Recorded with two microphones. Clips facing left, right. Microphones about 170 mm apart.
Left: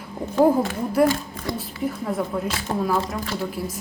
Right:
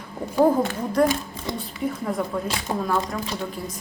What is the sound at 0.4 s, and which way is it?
Speech, 5° left (ahead or behind).